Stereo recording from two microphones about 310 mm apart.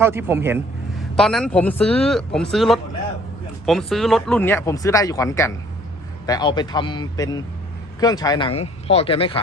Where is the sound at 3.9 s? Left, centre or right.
Centre.